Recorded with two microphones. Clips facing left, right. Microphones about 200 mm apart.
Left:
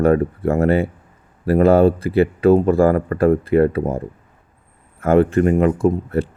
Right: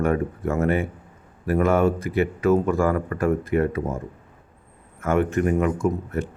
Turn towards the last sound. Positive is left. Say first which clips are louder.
# left 6 dB
turn(degrees=30)  # may be behind; listen again after turning